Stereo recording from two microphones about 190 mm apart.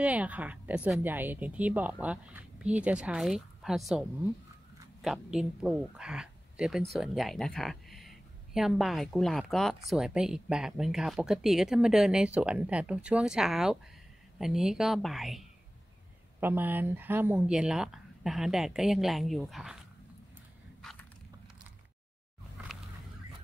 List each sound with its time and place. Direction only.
0.0 s speech: 5° right (ahead or behind)